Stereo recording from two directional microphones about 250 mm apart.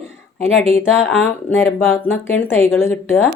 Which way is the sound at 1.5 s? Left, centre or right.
Centre.